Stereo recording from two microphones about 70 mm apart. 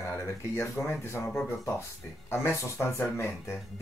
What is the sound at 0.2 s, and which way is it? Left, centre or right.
Speech, left.